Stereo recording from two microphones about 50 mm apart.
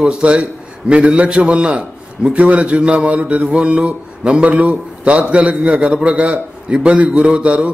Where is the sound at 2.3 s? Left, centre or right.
Right.